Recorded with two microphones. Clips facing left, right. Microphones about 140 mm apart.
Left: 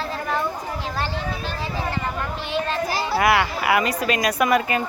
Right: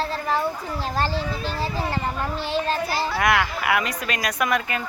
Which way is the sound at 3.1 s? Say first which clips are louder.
Left 4 dB; 5° left (ahead or behind).